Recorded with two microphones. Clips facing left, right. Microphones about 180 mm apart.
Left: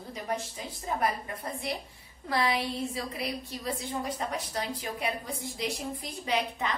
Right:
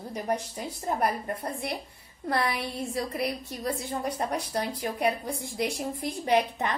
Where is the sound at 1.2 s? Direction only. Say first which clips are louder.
Right 3 dB; 55° right (ahead or behind).